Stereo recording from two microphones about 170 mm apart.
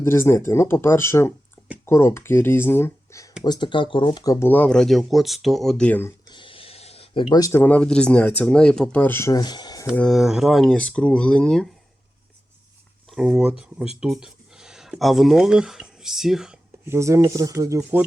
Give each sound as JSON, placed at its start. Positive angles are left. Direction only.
{"t": 0.0, "sound": "speech", "side_deg": 15}
{"t": 3.4, "sound": "speech", "side_deg": 25}
{"t": 6.3, "sound": "speech", "side_deg": 30}
{"t": 9.9, "sound": "speech", "side_deg": 5}
{"t": 13.1, "sound": "speech", "side_deg": -5}
{"t": 16.8, "sound": "speech", "side_deg": -15}